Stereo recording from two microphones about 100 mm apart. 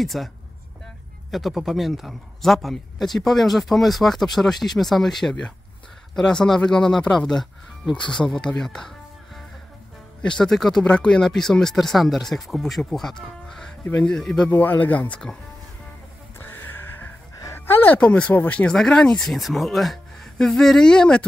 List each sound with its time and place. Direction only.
0.0 s speech: centre (ahead or behind)
1.3 s speech: centre (ahead or behind)
13.5 s music: 5° left (ahead or behind)
13.8 s speech: 10° left (ahead or behind)
14.5 s speech: 20° left (ahead or behind)
16.3 s music: 20° left (ahead or behind)
17.6 s speech: 20° left (ahead or behind)